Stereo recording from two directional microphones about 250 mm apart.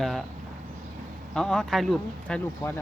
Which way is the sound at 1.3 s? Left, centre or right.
Centre.